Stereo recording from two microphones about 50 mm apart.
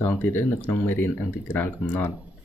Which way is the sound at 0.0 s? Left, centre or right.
Left.